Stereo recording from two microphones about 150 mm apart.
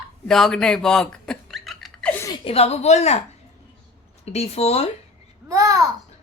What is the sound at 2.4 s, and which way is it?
Speech, 40° left (ahead or behind).